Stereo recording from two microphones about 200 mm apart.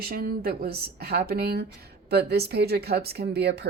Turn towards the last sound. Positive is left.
turn(degrees=-55)  # may be behind; listen again after turning